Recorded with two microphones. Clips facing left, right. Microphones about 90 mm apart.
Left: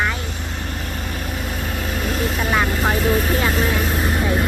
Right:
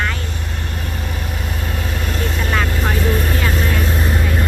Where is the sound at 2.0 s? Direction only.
5° left (ahead or behind).